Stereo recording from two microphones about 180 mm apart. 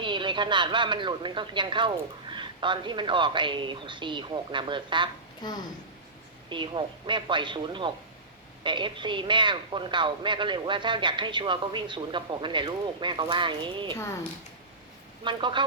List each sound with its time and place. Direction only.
0.0 s a man's voice: 25° right (ahead or behind)
5.4 s speech: 25° left (ahead or behind)
6.5 s a man's voice: 25° right (ahead or behind)
13.9 s speech: 15° left (ahead or behind)
15.2 s a man's voice: 25° right (ahead or behind)